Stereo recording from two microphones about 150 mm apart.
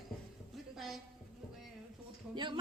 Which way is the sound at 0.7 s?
Centre (ahead or behind).